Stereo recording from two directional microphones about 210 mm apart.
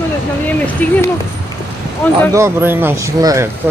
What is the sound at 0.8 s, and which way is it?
Speech, 5° left (ahead or behind).